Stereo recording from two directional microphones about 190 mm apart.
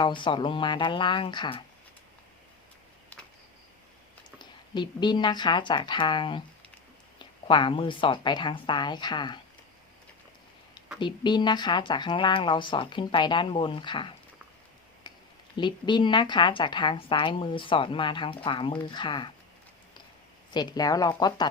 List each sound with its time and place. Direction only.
0.0 s a woman's voice: 25° left (ahead or behind)
4.4 s a woman's voice: 25° left (ahead or behind)
11.0 s a woman's voice: 25° left (ahead or behind)
15.1 s a sound: 25° left (ahead or behind)
15.5 s a woman's voice: 25° left (ahead or behind)
20.5 s a woman's voice: 20° left (ahead or behind)